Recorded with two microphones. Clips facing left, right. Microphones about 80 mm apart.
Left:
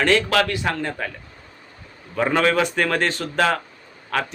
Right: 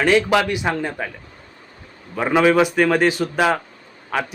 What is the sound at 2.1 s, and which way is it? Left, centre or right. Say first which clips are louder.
Speech: right 3 dB; centre.